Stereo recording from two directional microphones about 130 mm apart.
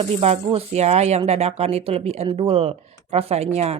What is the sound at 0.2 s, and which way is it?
A woman's voice, 55° right (ahead or behind).